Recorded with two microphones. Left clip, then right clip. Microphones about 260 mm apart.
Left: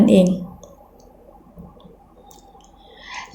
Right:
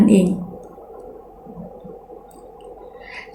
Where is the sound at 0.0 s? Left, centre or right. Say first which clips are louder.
Left 2 dB; left.